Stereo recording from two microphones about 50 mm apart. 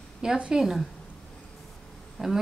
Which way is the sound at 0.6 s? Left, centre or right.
Centre.